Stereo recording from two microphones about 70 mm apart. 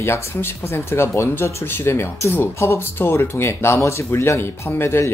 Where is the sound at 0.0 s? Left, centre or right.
Left.